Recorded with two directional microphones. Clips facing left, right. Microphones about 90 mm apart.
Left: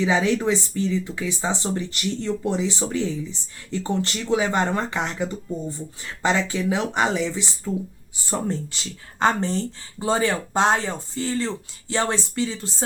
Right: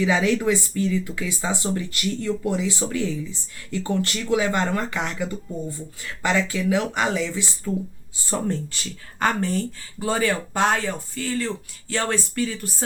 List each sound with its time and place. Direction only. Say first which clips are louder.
0.0 s speech: even; 20° left (ahead or behind)